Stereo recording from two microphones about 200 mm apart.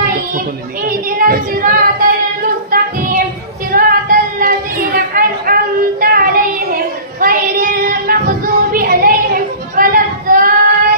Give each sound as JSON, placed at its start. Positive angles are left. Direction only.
{"t": 0.8, "sound": "child singing", "side_deg": -45}
{"t": 2.7, "sound": "music", "side_deg": -45}
{"t": 3.7, "sound": "a sound", "side_deg": -45}